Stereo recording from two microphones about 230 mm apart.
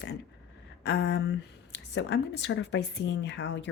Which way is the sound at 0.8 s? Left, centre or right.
Left.